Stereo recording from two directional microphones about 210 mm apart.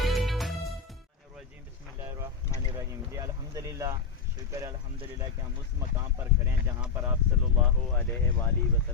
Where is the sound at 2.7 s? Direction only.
15° right (ahead or behind).